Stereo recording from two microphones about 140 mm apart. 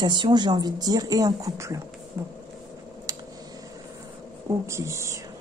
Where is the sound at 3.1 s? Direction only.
25° right (ahead or behind).